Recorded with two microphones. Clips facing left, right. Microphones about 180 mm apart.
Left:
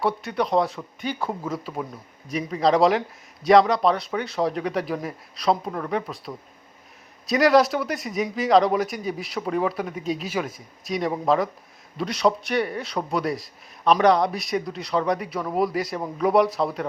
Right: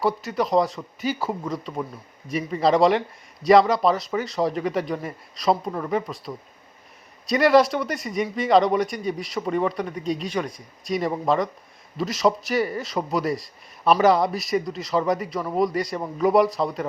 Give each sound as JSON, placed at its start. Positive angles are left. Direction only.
{"t": 0.0, "sound": "a man's voice", "side_deg": 0}